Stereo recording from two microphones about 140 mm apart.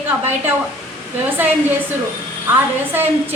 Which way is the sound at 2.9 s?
15° right (ahead or behind).